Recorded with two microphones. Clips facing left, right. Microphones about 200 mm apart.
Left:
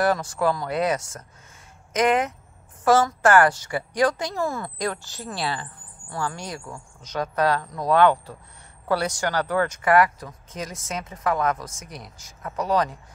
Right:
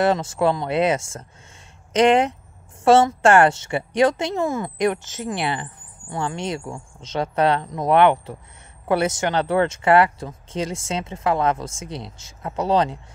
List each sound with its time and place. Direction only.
0.0 s speech: 25° right (ahead or behind)